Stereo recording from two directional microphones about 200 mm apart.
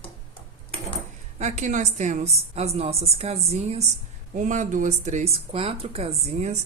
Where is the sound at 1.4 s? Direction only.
35° right (ahead or behind).